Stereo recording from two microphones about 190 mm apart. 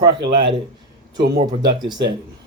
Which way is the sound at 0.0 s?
25° right (ahead or behind).